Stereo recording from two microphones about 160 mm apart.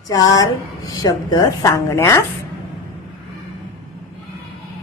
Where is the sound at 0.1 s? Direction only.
25° left (ahead or behind).